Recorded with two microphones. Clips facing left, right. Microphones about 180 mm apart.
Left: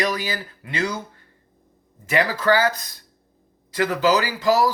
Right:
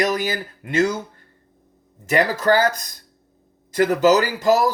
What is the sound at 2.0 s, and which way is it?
Speech, 45° right (ahead or behind).